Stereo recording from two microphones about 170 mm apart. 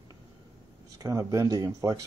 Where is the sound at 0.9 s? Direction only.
20° right (ahead or behind).